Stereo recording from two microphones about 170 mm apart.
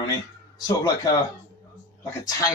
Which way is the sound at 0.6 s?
20° left (ahead or behind).